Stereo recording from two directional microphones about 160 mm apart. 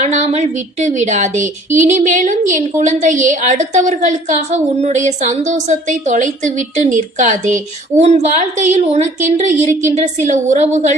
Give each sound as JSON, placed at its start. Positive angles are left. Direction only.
{"t": 0.0, "sound": "a woman's voice", "side_deg": -45}